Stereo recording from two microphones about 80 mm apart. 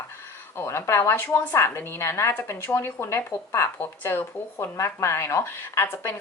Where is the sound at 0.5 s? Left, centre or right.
Left.